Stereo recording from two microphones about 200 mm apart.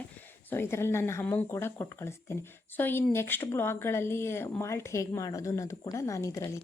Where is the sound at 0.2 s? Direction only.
10° left (ahead or behind).